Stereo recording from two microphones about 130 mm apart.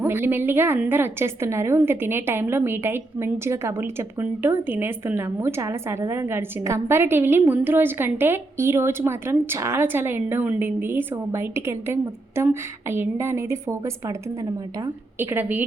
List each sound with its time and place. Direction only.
0.0 s a woman's voice: 15° right (ahead or behind)
15.2 s a woman's voice: 15° right (ahead or behind)